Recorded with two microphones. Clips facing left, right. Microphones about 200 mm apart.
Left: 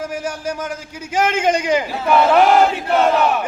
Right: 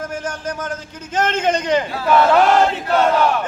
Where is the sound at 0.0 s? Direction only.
10° left (ahead or behind).